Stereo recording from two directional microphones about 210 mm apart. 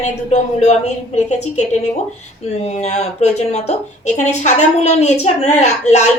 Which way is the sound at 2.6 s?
30° left (ahead or behind).